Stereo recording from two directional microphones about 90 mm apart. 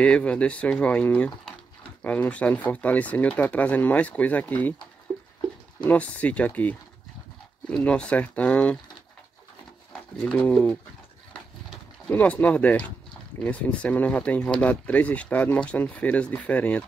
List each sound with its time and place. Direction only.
0.0 s speech: 15° left (ahead or behind)
5.9 s speech: 15° left (ahead or behind)
10.2 s speech: 10° left (ahead or behind)
12.1 s speech: 20° left (ahead or behind)